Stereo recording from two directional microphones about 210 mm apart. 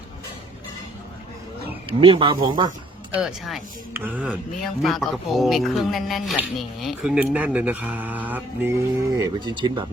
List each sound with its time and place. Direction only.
1.9 s speech: 25° right (ahead or behind)
3.2 s speech: centre (ahead or behind); by 9.8 s 20° right (ahead or behind)